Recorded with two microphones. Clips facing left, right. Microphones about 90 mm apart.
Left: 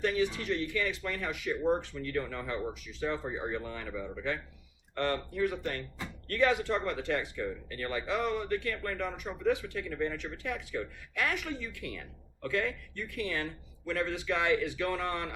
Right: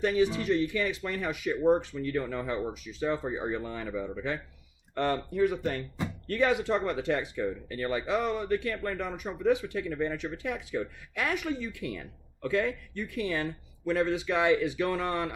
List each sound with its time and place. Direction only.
0.0 s speech: 15° right (ahead or behind)
5.6 s a man's voice: 15° right (ahead or behind)